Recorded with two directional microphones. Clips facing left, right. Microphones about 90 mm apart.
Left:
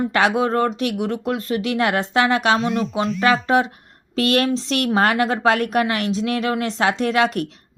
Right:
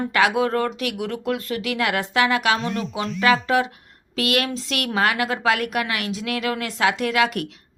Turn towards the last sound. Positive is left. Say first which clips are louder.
# left 2 dB
turn(degrees=35)  # may be behind; listen again after turning